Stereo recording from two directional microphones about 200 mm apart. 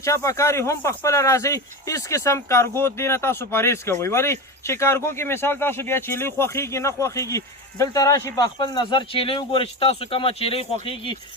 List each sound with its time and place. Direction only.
0.0 s speech: 15° left (ahead or behind)